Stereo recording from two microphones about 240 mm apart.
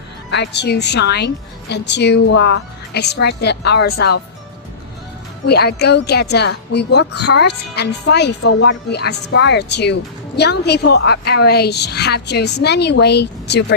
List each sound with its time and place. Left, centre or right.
0.3 s speech: left
5.5 s speech: left